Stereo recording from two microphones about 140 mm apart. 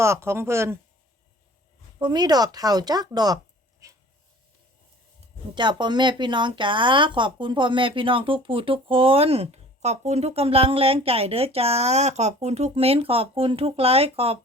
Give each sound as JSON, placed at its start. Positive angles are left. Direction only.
{"t": 0.0, "sound": "speech", "side_deg": -20}
{"t": 2.0, "sound": "speech", "side_deg": -30}
{"t": 5.5, "sound": "speech", "side_deg": -35}